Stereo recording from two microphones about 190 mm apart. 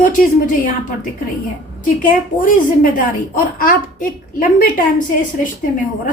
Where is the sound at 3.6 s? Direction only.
45° left (ahead or behind).